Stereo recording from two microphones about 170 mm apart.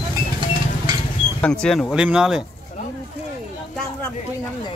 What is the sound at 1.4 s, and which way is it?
Speech, 5° left (ahead or behind).